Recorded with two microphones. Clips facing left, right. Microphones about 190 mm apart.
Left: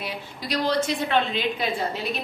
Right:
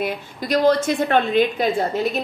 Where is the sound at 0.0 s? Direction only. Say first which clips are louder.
Right 8 dB; 50° right (ahead or behind).